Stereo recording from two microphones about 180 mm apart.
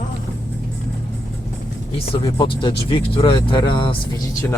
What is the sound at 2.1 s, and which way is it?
Speech, 30° left (ahead or behind).